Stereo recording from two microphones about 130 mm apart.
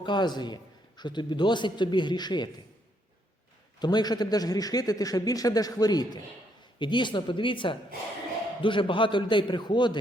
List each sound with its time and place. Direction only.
0.0 s a man's voice: 35° left (ahead or behind)
3.8 s a man's voice: 35° left (ahead or behind)